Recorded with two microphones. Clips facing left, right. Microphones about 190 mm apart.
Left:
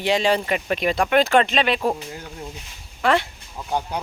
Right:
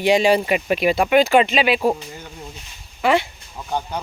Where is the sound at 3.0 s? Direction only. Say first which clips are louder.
Right 2 dB; 5° right (ahead or behind).